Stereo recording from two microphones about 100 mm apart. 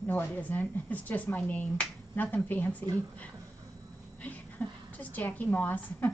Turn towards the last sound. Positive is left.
turn(degrees=15)  # may be behind; listen again after turning